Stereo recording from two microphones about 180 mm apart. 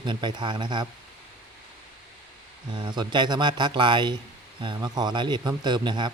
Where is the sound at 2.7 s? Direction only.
25° right (ahead or behind).